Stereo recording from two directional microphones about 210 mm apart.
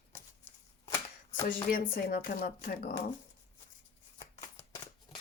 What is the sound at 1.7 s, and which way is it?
Speech, 45° left (ahead or behind).